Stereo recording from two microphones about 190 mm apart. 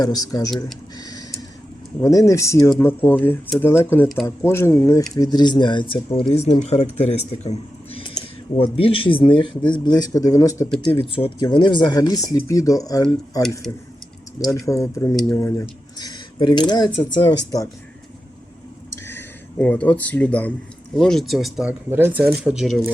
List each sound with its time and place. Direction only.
0.0 s speech: 20° left (ahead or behind)
0.9 s a sound: 20° left (ahead or behind)
2.0 s speech: 15° left (ahead or behind)
10.8 s speech: 30° left (ahead or behind)
14.7 s speech: 15° left (ahead or behind)
19.0 s speech: 10° left (ahead or behind)